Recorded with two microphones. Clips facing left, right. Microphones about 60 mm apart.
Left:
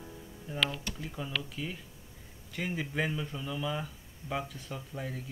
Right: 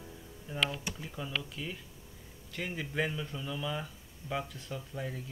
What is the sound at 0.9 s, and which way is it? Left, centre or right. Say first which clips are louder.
Speech: left 1 dB; centre.